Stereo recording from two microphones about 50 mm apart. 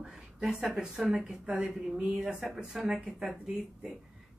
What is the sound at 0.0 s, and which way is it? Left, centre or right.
A woman's voice, centre.